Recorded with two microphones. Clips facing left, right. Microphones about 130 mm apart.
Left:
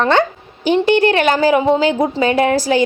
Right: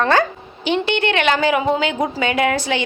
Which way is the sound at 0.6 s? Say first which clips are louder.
Left 6 dB; 40° left (ahead or behind).